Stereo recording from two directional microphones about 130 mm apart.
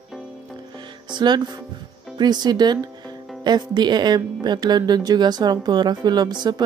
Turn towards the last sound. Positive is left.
turn(degrees=-35)  # may be behind; listen again after turning